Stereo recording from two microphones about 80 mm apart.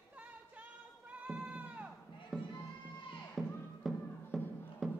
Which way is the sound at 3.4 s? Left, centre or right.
Centre.